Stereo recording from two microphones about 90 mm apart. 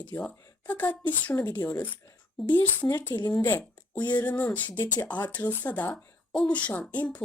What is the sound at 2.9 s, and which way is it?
Speech, 20° left (ahead or behind).